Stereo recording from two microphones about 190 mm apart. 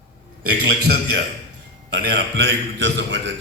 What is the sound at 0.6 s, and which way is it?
A man's voice, 60° right (ahead or behind).